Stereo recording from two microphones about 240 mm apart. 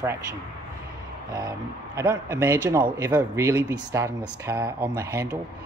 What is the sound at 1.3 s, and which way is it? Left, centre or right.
Speech, centre.